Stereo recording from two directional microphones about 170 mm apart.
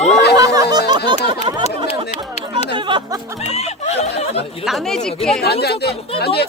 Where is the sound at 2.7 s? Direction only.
30° right (ahead or behind).